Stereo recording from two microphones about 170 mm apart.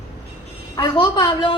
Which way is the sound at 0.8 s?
25° left (ahead or behind).